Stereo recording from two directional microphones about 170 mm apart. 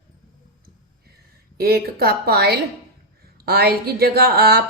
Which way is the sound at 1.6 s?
65° right (ahead or behind).